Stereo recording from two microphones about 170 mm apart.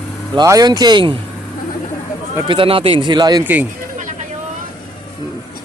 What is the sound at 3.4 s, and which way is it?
Speech, 10° right (ahead or behind).